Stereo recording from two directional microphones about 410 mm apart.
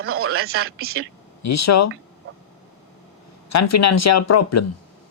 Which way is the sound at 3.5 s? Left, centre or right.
Left.